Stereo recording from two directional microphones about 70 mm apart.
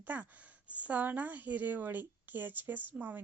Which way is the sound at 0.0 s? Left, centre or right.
Right.